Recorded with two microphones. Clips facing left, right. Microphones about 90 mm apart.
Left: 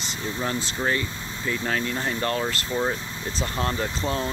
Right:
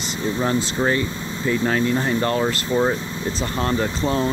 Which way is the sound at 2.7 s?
25° right (ahead or behind).